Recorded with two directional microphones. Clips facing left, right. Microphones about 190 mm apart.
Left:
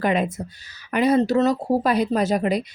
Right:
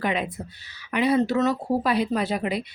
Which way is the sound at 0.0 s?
45° left (ahead or behind).